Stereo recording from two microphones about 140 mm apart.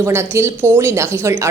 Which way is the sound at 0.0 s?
20° right (ahead or behind).